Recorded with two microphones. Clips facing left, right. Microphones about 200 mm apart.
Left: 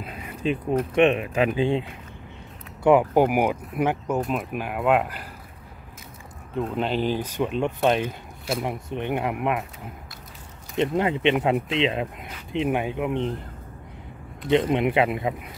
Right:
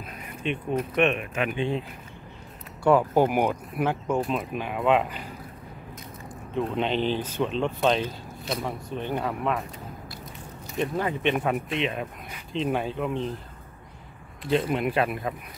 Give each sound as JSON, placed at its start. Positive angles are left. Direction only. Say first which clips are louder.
{"t": 0.0, "sound": "a sound", "louder": "left 4 dB", "side_deg": 30}
{"t": 1.3, "sound": "speech", "louder": "left 5 dB", "side_deg": 30}
{"t": 2.8, "sound": "speech", "louder": "left 2 dB", "side_deg": 15}
{"t": 4.2, "sound": "speech", "louder": "left 1 dB", "side_deg": 5}
{"t": 6.5, "sound": "speech", "louder": "left 1 dB", "side_deg": 5}
{"t": 8.5, "sound": "speech", "louder": "left 3 dB", "side_deg": 25}
{"t": 10.8, "sound": "speech", "louder": "left 4 dB", "side_deg": 20}
{"t": 14.5, "sound": "speech", "louder": "left 4 dB", "side_deg": 20}